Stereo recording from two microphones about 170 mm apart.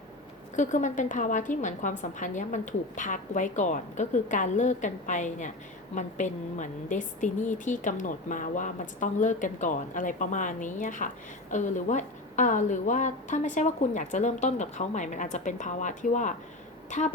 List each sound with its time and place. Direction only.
0.5 s a woman's voice: 45° left (ahead or behind)